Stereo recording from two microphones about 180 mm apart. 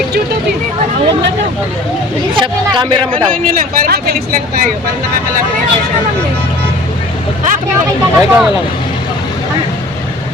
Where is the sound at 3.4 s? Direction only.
50° right (ahead or behind).